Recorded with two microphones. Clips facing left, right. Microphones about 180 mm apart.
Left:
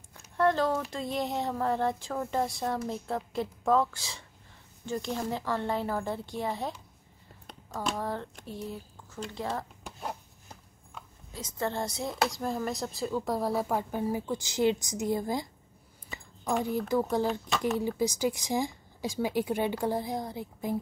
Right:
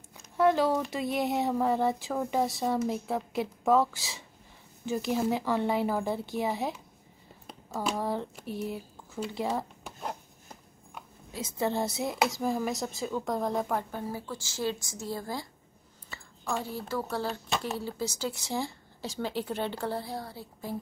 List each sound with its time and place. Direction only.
0.4 s speech: 10° right (ahead or behind)
7.4 s a sound: 5° right (ahead or behind)
7.9 s speech: 10° right (ahead or behind)
11.0 s a woman's voice: 10° right (ahead or behind); by 20.7 s 15° left (ahead or behind)